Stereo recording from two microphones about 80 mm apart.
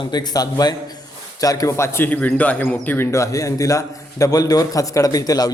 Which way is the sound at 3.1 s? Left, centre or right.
Left.